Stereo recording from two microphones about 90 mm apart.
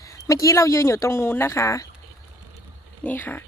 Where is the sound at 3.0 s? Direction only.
20° left (ahead or behind).